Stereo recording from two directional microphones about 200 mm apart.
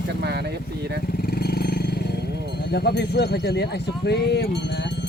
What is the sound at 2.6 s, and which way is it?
Speech, 55° left (ahead or behind).